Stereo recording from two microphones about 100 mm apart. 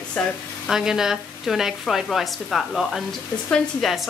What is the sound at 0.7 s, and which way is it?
A woman's voice, 5° right (ahead or behind).